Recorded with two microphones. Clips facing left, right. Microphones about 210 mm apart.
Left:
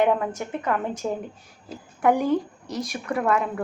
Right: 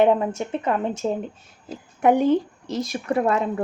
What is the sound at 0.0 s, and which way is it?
A woman's voice, 25° right (ahead or behind).